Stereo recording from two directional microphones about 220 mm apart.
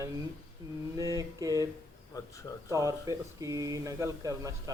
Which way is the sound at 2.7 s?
15° right (ahead or behind).